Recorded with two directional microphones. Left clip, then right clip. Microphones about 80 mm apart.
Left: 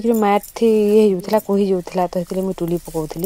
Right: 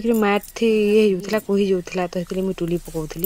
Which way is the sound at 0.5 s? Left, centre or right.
Left.